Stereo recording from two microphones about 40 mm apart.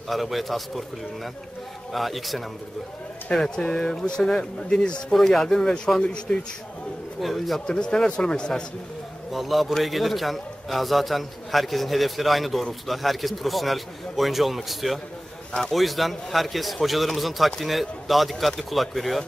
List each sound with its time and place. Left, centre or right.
0.1 s a man's voice: centre
3.3 s a man's voice: centre
4.6 s a man's voice: left
5.1 s speech: centre
6.0 s a man's voice: left
7.2 s a man's voice: centre
7.6 s a man's voice: left
9.3 s a man's voice: centre